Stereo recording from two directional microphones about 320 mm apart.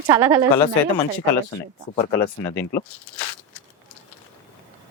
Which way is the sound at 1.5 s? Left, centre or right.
Centre.